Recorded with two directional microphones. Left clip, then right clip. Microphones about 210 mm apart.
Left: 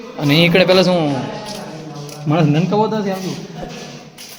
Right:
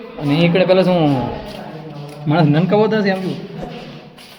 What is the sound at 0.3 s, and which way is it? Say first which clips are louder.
Speech: left 2 dB; 15° left (ahead or behind).